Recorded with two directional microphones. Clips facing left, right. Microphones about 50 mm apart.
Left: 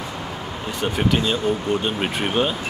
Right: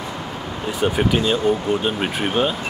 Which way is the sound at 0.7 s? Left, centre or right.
Centre.